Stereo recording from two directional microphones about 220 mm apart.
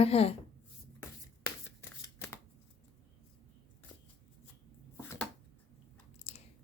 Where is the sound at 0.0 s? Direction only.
25° left (ahead or behind).